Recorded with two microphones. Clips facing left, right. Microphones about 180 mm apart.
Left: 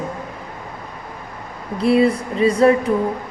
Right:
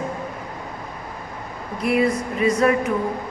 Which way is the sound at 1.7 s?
30° left (ahead or behind).